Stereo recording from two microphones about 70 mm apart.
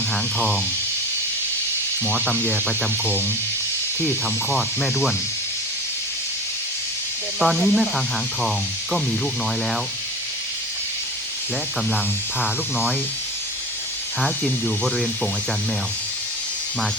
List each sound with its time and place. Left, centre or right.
0.1 s speech: centre
2.2 s speech: centre
4.5 s speech: centre
7.3 s speech: centre
12.4 s speech: centre
14.2 s speech: centre